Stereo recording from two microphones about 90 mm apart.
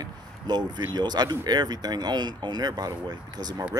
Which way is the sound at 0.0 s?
50° right (ahead or behind).